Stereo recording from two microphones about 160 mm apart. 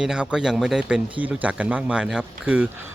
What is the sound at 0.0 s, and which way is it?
A man's voice, 5° right (ahead or behind).